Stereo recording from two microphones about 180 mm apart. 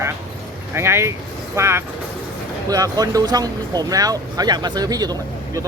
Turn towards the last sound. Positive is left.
turn(degrees=-20)  # may be behind; listen again after turning